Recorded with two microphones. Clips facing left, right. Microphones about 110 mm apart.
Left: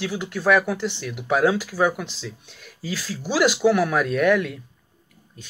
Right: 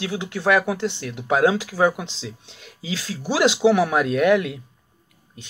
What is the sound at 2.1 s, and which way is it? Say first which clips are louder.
Speech: right 1 dB; 20° right (ahead or behind).